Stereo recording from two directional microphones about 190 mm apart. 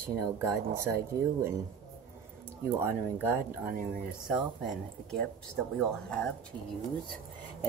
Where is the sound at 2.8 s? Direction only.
10° right (ahead or behind).